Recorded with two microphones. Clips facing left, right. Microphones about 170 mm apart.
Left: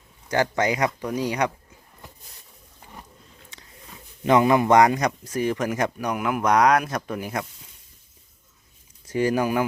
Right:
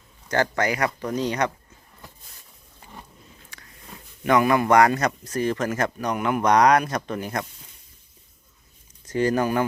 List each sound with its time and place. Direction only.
0.3 s speech: 15° left (ahead or behind)
3.5 s a sound: 25° left (ahead or behind)
4.2 s speech: 25° left (ahead or behind); by 7.4 s 5° left (ahead or behind)
9.0 s speech: 10° left (ahead or behind)